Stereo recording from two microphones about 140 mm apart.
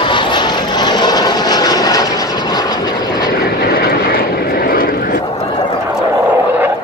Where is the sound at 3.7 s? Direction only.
90° left.